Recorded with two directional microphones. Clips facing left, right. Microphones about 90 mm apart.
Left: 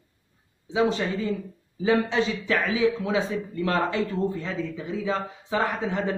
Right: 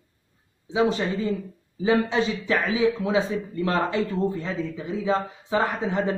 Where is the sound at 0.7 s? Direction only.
10° right (ahead or behind).